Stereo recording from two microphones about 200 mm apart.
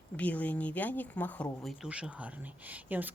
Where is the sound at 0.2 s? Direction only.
10° left (ahead or behind).